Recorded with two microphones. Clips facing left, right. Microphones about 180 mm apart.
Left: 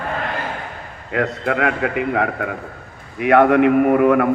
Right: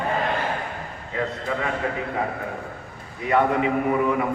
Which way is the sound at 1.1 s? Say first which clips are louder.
Left 7 dB; 75° left (ahead or behind).